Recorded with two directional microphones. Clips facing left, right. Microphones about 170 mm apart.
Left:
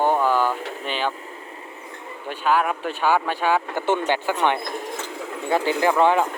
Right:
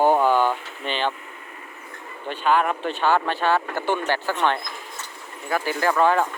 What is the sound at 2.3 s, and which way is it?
Speech, 5° left (ahead or behind).